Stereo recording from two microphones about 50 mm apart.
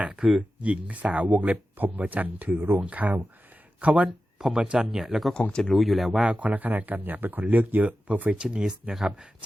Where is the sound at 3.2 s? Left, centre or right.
Right.